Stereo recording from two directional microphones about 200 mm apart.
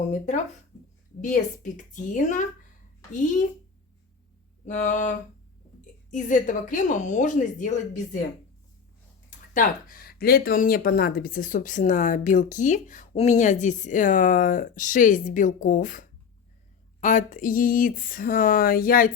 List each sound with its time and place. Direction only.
1.2 s speech: 40° left (ahead or behind)
4.6 s speech: 35° left (ahead or behind)
9.6 s speech: 45° left (ahead or behind)